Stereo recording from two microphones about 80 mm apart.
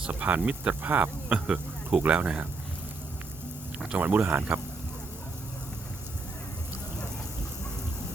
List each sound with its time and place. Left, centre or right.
0.0 s speech: centre
3.8 s speech: centre